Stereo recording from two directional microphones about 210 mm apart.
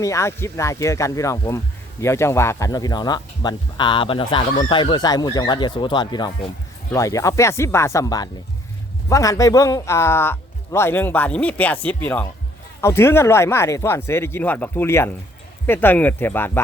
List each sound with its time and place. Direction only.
0.0 s speech: 15° left (ahead or behind)